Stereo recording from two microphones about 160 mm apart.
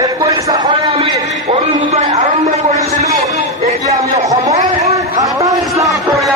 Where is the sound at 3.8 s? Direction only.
20° right (ahead or behind).